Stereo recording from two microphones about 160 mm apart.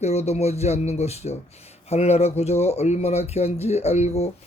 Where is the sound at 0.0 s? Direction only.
40° left (ahead or behind).